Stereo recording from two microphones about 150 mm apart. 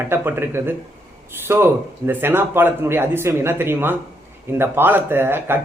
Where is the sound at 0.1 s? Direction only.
15° right (ahead or behind).